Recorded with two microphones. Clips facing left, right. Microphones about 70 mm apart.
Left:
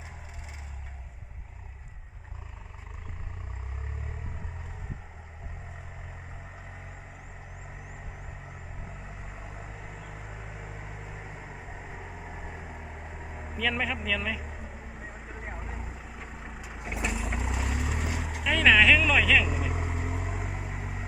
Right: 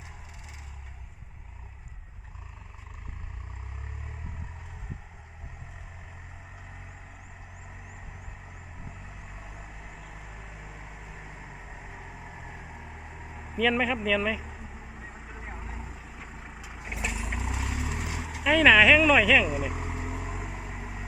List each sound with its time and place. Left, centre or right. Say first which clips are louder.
9.6 s vehicle: left 2 dB; centre
10.2 s vehicle: left 2 dB; left; by 13.6 s centre
13.6 s speech: right 5 dB; centre
14.4 s vehicle: left 1 dB; centre
16.9 s vehicle: left 2 dB; centre